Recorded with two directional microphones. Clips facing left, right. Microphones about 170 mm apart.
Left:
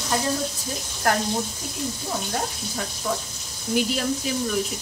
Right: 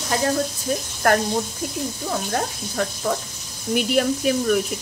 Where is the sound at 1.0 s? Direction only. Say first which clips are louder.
Right 5 dB; 55° right (ahead or behind).